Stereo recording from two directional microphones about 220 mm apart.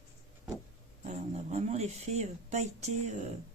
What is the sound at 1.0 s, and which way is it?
Speech, 30° right (ahead or behind).